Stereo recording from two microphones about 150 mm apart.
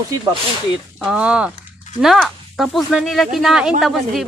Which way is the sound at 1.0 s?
5° right (ahead or behind).